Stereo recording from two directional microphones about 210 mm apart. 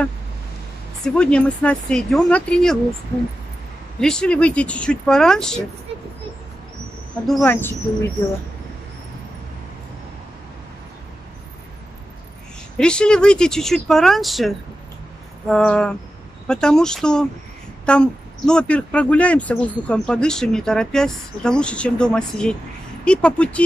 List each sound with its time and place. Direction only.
1.0 s speech: 5° left (ahead or behind)
4.0 s speech: 5° left (ahead or behind)
7.2 s a woman's voice: 5° left (ahead or behind)
12.7 s speech: 5° left (ahead or behind)